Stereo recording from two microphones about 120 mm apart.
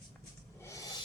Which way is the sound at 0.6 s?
25° left (ahead or behind).